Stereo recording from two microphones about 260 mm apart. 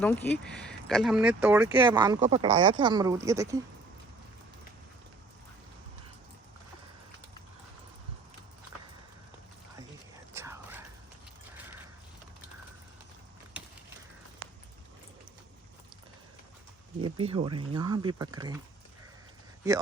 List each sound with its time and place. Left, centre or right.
0.0 s speech: centre
10.3 s whispering: centre
17.0 s speech: right
19.6 s speech: centre